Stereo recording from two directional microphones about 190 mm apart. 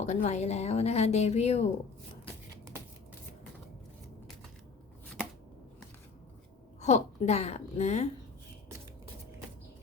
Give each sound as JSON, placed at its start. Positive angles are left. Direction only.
{"t": 0.0, "sound": "speech", "side_deg": 40}
{"t": 2.2, "sound": "a sound", "side_deg": -15}
{"t": 6.8, "sound": "speech", "side_deg": 35}